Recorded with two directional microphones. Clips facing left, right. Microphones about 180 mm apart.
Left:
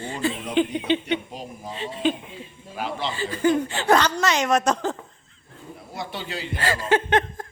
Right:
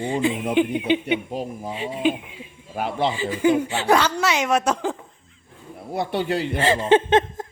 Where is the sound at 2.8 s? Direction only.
55° right (ahead or behind).